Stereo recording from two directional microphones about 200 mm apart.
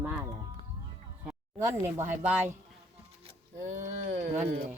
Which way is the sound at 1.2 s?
10° right (ahead or behind).